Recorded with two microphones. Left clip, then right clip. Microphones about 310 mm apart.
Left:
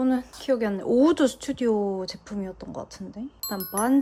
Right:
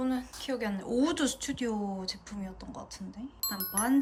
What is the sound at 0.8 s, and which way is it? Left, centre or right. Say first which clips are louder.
Speech: left 9 dB; left.